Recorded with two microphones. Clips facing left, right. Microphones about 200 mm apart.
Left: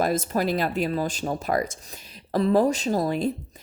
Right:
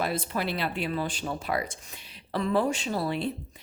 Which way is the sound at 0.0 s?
45° left (ahead or behind).